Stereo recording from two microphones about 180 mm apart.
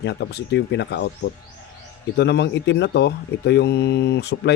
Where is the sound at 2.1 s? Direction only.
70° left (ahead or behind).